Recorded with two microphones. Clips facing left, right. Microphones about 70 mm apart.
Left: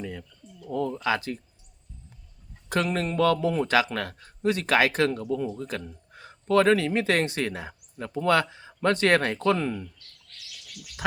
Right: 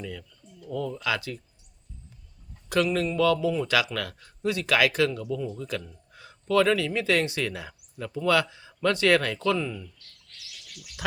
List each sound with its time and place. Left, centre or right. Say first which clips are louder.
0.0 s a sound: left 2 dB; left
0.7 s a man's voice: left 3 dB; left
2.6 s a man's voice: right 2 dB; left